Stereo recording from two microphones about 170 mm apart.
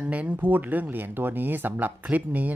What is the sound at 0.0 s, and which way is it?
A man's voice, 10° right (ahead or behind).